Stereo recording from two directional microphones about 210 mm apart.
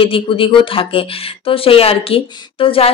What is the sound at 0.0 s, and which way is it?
Speech, 25° left (ahead or behind).